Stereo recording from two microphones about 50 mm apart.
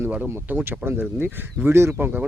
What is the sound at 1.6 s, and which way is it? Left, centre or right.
Speech, right.